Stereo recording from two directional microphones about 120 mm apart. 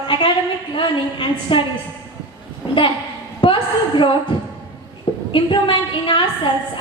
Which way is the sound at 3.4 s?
45° left (ahead or behind).